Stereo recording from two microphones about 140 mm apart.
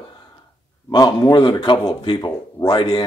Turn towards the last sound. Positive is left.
turn(degrees=35)  # may be behind; listen again after turning